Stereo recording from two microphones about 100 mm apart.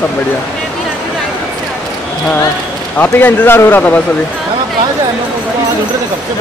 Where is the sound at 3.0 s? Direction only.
20° left (ahead or behind).